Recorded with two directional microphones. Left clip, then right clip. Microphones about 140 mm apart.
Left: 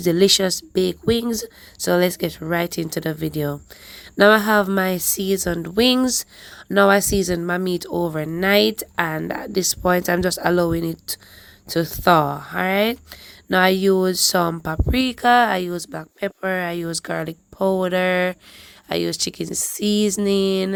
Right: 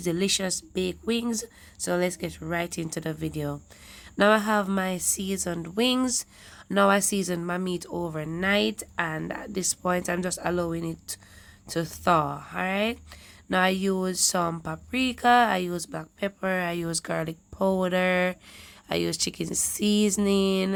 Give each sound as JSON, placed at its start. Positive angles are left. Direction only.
{"t": 0.0, "sound": "speech", "side_deg": 45}